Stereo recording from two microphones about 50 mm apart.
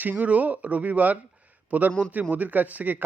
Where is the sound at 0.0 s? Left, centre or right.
Right.